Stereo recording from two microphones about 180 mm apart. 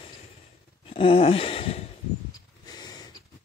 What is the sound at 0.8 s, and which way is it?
Gasp, 30° left (ahead or behind).